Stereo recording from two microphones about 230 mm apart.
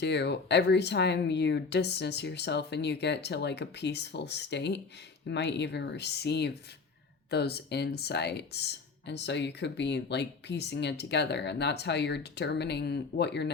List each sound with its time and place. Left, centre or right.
0.0 s speech: left